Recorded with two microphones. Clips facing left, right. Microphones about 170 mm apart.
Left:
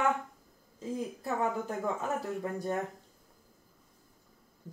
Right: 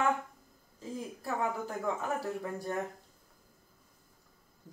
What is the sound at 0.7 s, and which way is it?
Speech, 20° left (ahead or behind).